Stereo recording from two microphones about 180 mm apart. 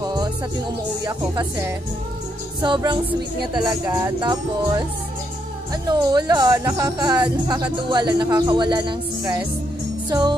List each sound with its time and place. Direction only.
0.0 s music: 25° right (ahead or behind)
1.0 s speech: 25° right (ahead or behind)
2.6 s speech: 25° right (ahead or behind)
10.0 s music: 25° right (ahead or behind)